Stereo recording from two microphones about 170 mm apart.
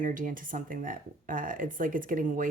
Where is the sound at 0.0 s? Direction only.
50° right (ahead or behind).